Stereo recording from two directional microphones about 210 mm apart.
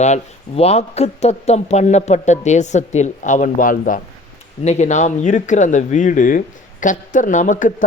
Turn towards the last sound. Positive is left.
turn(degrees=40)  # may be behind; listen again after turning